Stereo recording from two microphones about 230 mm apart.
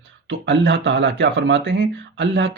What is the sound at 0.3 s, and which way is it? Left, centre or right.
Speech, right.